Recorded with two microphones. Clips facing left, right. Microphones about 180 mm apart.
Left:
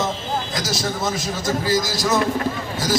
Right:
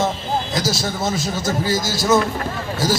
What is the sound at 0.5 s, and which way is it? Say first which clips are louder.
A man's voice: right 2 dB; 25° right (ahead or behind).